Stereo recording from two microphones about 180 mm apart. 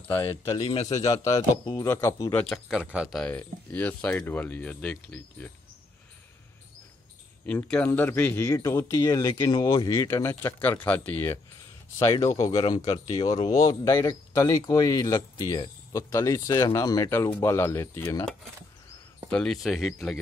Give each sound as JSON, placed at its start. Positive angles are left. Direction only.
{"t": 0.6, "sound": "speech", "side_deg": 25}
{"t": 2.3, "sound": "speech", "side_deg": 5}
{"t": 7.4, "sound": "speech", "side_deg": 10}
{"t": 12.5, "sound": "speech", "side_deg": 25}
{"t": 19.3, "sound": "speech", "side_deg": 0}